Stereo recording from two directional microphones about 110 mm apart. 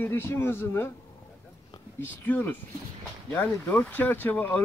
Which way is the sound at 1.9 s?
20° left (ahead or behind).